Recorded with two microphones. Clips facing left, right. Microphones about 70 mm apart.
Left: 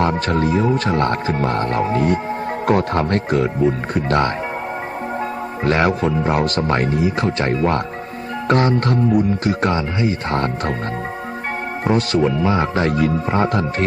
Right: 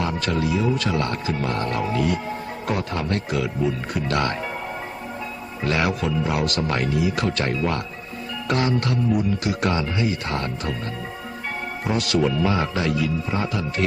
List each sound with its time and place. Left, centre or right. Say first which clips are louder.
0.0 s speech: left 6 dB; left
2.6 s speech: left 8 dB; left
5.6 s speech: left 6 dB; left
11.9 s speech: left 5 dB; left